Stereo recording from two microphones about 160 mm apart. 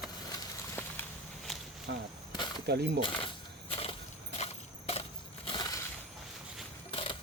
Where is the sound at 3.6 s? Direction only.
40° left (ahead or behind).